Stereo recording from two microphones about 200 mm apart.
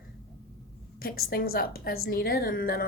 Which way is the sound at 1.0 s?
50° left (ahead or behind).